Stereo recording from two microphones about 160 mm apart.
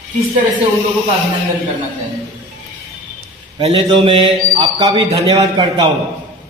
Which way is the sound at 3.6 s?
35° right (ahead or behind).